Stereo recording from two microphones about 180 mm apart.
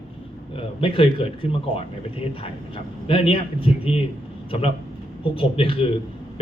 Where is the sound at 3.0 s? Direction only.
30° left (ahead or behind).